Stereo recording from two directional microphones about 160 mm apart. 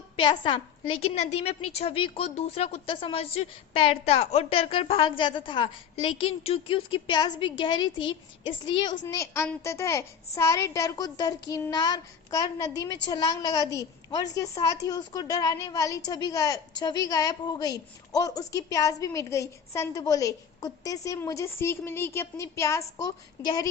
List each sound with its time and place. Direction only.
0.2 s a woman's voice: 30° left (ahead or behind)